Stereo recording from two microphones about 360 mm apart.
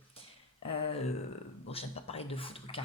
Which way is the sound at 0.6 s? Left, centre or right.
Centre.